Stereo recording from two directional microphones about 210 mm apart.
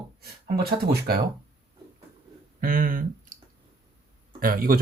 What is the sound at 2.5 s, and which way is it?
Speech, 40° right (ahead or behind).